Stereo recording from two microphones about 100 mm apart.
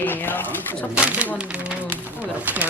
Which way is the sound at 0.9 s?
15° right (ahead or behind).